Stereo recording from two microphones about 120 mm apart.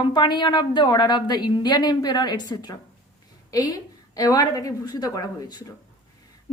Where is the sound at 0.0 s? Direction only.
40° left (ahead or behind).